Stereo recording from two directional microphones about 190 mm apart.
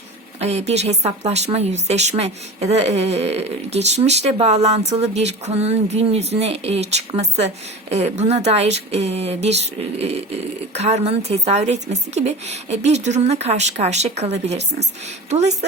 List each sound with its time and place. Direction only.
0.3 s speech: 35° right (ahead or behind)
10.8 s speech: 35° right (ahead or behind)